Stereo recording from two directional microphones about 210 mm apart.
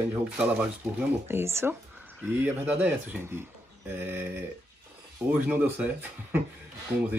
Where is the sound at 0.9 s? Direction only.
10° right (ahead or behind).